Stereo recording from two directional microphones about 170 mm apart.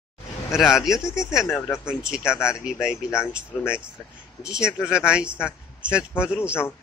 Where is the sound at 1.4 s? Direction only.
15° left (ahead or behind).